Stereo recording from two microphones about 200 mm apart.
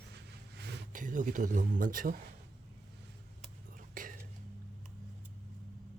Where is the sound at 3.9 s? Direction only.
45° right (ahead or behind).